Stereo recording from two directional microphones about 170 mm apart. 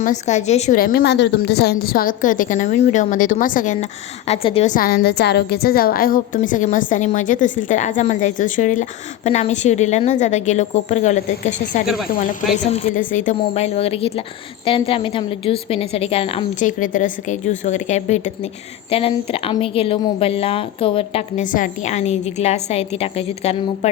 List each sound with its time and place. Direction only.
0.0 s a woman's voice: 45° left (ahead or behind)
0.8 s a woman's voice: 60° left (ahead or behind)
4.3 s a woman's voice: 35° left (ahead or behind)
4.7 s a woman's voice: 60° left (ahead or behind); by 16.5 s 35° left (ahead or behind)
16.6 s a woman's voice: 50° left (ahead or behind); by 21.4 s 35° left (ahead or behind)
21.5 s a woman's voice: 50° left (ahead or behind)